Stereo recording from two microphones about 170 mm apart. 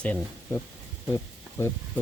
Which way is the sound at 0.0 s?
10° left (ahead or behind).